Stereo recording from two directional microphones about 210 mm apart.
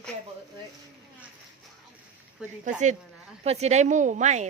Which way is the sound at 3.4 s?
30° right (ahead or behind).